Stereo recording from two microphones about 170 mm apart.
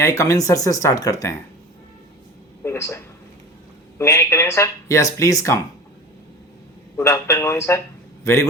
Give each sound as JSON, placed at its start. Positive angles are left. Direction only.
{"t": 0.0, "sound": "speech", "side_deg": 20}
{"t": 2.6, "sound": "speech", "side_deg": 15}
{"t": 6.9, "sound": "a man's voice", "side_deg": 15}